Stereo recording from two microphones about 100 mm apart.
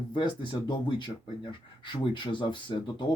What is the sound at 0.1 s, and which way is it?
Speech, 55° left (ahead or behind).